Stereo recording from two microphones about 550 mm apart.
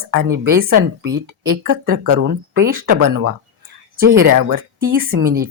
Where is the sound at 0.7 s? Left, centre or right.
Right.